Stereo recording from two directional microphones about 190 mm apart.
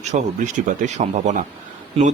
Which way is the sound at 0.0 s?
40° right (ahead or behind).